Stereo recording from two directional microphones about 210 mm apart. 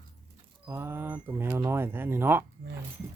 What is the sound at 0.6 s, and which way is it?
A woman's voice, 10° right (ahead or behind).